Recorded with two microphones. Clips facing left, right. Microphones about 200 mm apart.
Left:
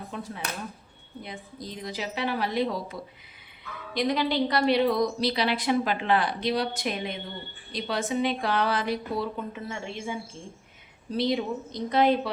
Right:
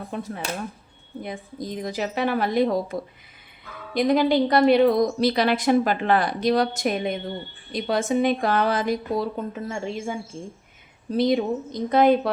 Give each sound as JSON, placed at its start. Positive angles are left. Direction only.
{"t": 0.1, "sound": "speech", "side_deg": -55}
{"t": 11.2, "sound": "speech", "side_deg": -50}